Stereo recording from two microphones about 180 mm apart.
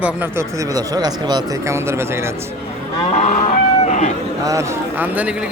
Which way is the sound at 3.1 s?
40° left (ahead or behind).